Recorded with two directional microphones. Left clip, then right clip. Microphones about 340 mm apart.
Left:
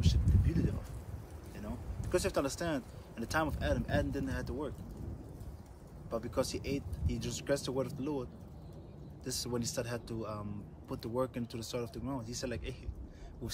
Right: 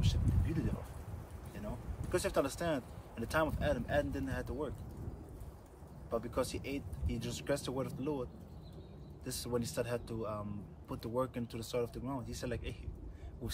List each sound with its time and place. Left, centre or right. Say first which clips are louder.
0.0 s a sound: left 2 dB; centre
1.6 s speech: even; centre
6.0 s speech: left 1 dB; centre